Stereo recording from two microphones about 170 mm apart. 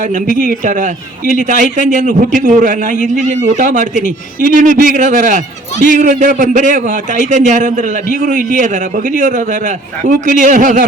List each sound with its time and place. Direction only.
0.4 s a man's voice: 50° right (ahead or behind)